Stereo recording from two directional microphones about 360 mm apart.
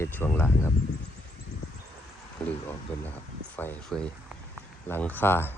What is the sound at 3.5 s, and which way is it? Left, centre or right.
Speech, centre.